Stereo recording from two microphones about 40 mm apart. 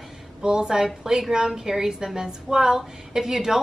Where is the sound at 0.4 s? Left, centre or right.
Centre.